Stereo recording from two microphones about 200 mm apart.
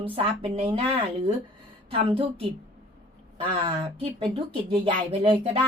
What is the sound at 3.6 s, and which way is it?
A woman's voice, 25° right (ahead or behind).